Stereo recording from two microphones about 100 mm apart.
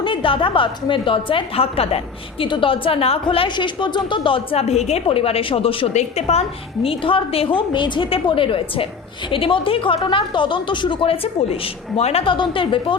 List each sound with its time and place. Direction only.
0.0 s a woman's voice: 60° left (ahead or behind); by 2.0 s 80° left
2.4 s a woman's voice: 60° left (ahead or behind); by 6.4 s 90° left
6.8 s a woman's voice: 65° left (ahead or behind)